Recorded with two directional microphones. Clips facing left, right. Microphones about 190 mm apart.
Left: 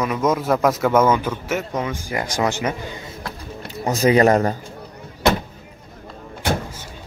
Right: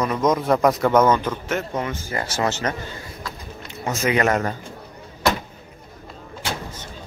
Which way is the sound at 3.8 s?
35° left (ahead or behind).